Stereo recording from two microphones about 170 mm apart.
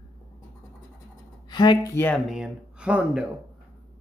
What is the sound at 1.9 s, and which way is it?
Speech, 10° left (ahead or behind).